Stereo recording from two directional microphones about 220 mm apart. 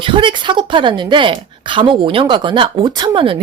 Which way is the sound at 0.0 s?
20° right (ahead or behind).